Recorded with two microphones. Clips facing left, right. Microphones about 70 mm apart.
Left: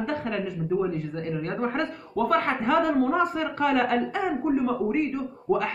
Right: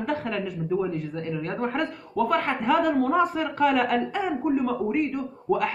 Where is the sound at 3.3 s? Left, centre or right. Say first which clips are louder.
Right 1 dB; left.